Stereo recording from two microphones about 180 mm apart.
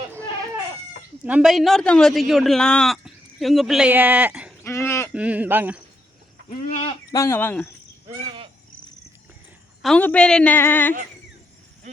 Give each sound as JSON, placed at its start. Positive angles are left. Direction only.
{"t": 1.2, "sound": "speech", "side_deg": -5}
{"t": 4.6, "sound": "a sound", "side_deg": 15}
{"t": 5.1, "sound": "speech", "side_deg": -10}
{"t": 6.7, "sound": "speech", "side_deg": 40}
{"t": 7.1, "sound": "a woman's voice", "side_deg": 15}
{"t": 9.8, "sound": "a woman's voice", "side_deg": 5}